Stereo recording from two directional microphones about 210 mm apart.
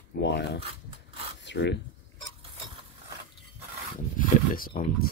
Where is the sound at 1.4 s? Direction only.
55° left (ahead or behind).